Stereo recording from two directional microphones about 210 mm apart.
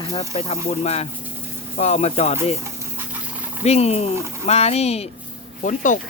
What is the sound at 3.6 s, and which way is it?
Speech, 30° left (ahead or behind).